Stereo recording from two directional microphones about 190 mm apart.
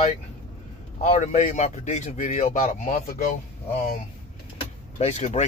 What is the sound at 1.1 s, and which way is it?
A man's voice, 35° left (ahead or behind).